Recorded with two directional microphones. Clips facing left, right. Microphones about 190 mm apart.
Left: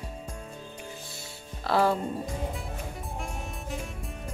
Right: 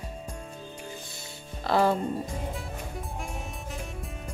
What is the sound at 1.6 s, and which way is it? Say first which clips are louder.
Music: right 1 dB; centre (ahead or behind).